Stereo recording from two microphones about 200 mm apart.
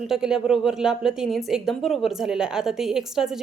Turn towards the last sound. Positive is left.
turn(degrees=0)  # may be behind; listen again after turning